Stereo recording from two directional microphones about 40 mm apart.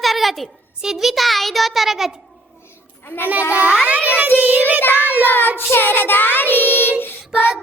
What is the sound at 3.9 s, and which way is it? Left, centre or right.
Music, right.